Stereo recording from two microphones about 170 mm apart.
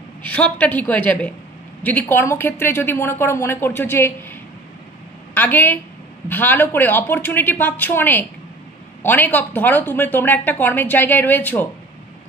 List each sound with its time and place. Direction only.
0.2 s a woman's voice: 10° left (ahead or behind)
5.3 s a woman's voice: 10° left (ahead or behind)